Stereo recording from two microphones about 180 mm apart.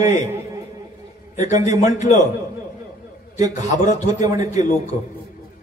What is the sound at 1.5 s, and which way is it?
Speech, 20° right (ahead or behind).